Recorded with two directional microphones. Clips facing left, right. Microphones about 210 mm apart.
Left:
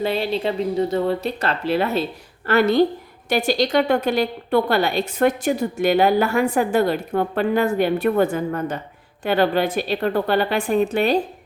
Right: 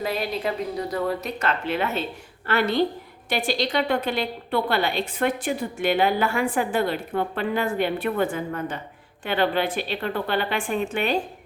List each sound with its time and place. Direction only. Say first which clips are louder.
0.0 s a woman's voice: left 5 dB; 30° left (ahead or behind)